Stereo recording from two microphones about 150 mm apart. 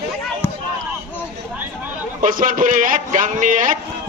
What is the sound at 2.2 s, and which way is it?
A man's voice, 60° right (ahead or behind).